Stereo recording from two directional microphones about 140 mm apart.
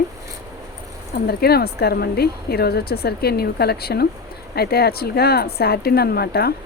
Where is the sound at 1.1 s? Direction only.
90° left.